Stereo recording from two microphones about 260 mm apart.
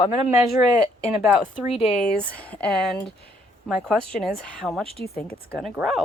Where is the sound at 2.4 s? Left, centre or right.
Centre.